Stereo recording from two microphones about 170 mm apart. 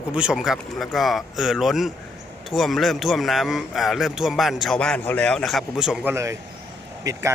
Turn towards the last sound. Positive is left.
turn(degrees=-20)  # may be behind; listen again after turning